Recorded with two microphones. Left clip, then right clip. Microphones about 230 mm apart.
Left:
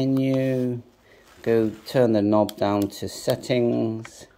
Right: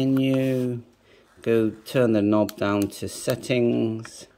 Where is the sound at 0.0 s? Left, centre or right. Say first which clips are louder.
Even; centre.